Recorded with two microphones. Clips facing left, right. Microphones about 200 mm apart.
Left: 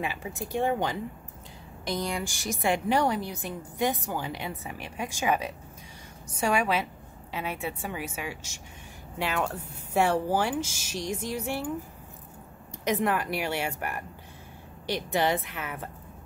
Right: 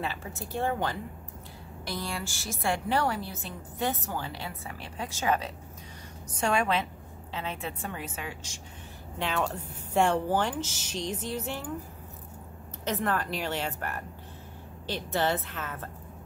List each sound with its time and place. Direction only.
0.0 s a woman's voice: 15° left (ahead or behind)
12.8 s a woman's voice: 15° left (ahead or behind)